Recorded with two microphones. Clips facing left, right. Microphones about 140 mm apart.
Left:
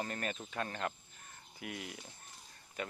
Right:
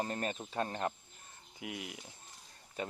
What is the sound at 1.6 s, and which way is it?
Speech, 15° right (ahead or behind).